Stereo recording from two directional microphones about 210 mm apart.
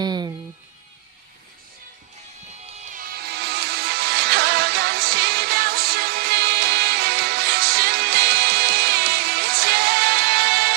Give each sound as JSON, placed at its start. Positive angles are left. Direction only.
{"t": 0.0, "sound": "music", "side_deg": -20}
{"t": 2.6, "sound": "music", "side_deg": -35}